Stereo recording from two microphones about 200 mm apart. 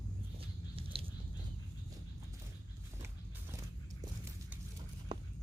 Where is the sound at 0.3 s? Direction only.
25° right (ahead or behind).